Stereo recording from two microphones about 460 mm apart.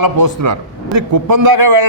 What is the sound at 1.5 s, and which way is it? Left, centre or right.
Speech, right.